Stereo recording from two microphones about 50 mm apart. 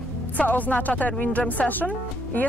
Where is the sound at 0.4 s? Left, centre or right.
Left.